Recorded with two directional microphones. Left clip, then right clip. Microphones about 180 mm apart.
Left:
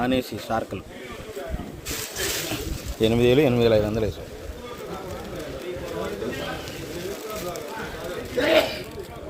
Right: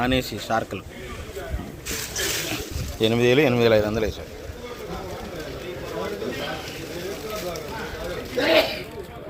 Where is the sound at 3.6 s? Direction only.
5° left (ahead or behind).